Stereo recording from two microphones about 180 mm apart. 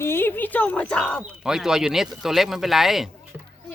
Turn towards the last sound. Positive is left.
turn(degrees=0)  # may be behind; listen again after turning